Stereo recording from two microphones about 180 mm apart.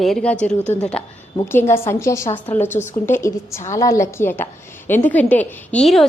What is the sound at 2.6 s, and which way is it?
Speech, 40° left (ahead or behind).